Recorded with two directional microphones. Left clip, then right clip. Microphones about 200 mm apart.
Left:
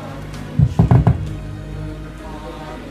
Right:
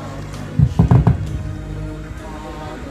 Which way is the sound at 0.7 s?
30° left (ahead or behind).